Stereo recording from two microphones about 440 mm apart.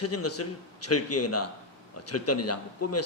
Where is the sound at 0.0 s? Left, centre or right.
Left.